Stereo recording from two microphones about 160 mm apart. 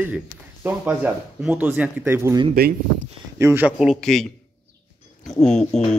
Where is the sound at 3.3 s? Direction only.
15° right (ahead or behind).